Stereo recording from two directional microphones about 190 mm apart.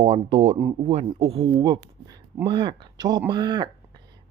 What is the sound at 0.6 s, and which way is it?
Speech, 20° right (ahead or behind).